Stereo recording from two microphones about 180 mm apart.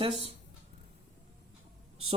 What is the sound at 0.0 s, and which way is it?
Speech, 30° right (ahead or behind).